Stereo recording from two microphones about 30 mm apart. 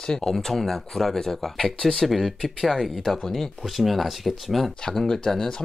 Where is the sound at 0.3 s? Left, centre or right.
Centre.